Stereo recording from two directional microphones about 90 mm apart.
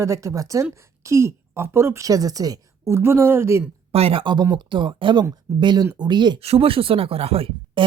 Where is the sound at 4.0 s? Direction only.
90° right.